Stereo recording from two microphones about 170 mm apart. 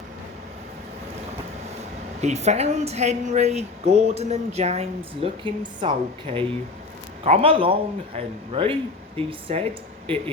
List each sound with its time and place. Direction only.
2.2 s a woman's voice: 40° right (ahead or behind)